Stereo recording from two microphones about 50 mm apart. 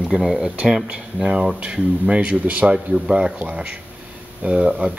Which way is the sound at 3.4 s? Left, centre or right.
Right.